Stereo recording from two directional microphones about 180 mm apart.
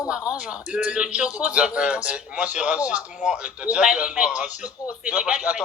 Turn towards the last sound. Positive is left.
turn(degrees=-5)  # may be behind; listen again after turning